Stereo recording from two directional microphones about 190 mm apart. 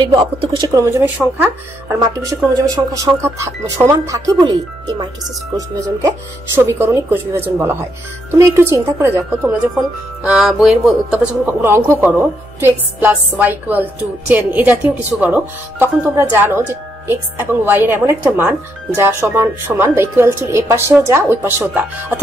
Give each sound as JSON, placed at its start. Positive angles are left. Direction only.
{"t": 0.0, "sound": "speech", "side_deg": -30}
{"t": 2.0, "sound": "speech", "side_deg": -20}
{"t": 5.8, "sound": "speech", "side_deg": -20}